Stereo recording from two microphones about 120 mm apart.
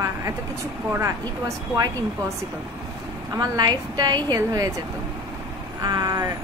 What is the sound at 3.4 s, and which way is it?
A woman's voice, 35° right (ahead or behind).